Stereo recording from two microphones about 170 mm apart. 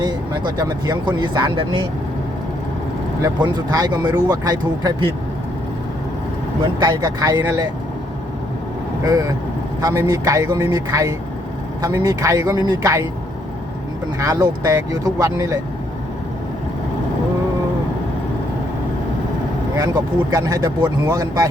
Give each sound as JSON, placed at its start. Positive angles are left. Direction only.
{"t": 0.0, "sound": "speech", "side_deg": -25}
{"t": 3.3, "sound": "speech", "side_deg": -25}
{"t": 6.6, "sound": "speech", "side_deg": -25}
{"t": 9.8, "sound": "speech", "side_deg": -20}
{"t": 14.2, "sound": "speech", "side_deg": -20}
{"t": 19.7, "sound": "speech", "side_deg": -20}